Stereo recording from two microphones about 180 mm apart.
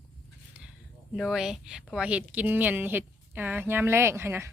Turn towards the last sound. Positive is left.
turn(degrees=-15)  # may be behind; listen again after turning